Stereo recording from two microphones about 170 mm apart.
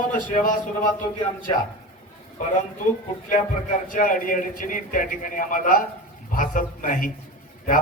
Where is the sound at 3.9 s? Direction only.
50° left (ahead or behind).